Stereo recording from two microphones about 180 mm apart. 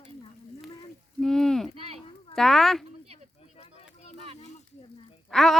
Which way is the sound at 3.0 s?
35° right (ahead or behind).